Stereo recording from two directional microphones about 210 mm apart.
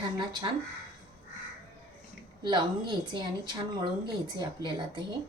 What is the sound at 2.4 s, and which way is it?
Speech, 20° right (ahead or behind).